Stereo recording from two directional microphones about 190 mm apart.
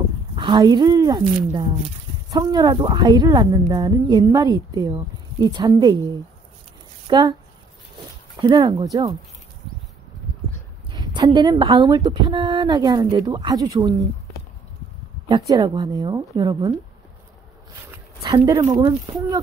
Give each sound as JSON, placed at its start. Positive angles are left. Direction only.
{"t": 0.4, "sound": "speech", "side_deg": -25}
{"t": 7.1, "sound": "speech", "side_deg": -25}
{"t": 8.4, "sound": "speech", "side_deg": -20}
{"t": 10.9, "sound": "speech", "side_deg": -20}
{"t": 15.2, "sound": "speech", "side_deg": -20}
{"t": 17.9, "sound": "speech", "side_deg": -20}